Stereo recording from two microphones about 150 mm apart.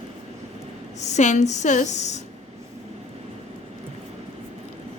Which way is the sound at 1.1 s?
50° left (ahead or behind).